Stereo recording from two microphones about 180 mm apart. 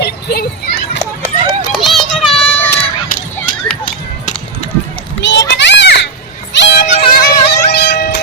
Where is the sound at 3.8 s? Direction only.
45° left (ahead or behind).